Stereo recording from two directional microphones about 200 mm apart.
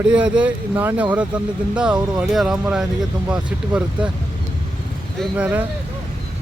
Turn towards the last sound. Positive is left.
turn(degrees=-10)  # may be behind; listen again after turning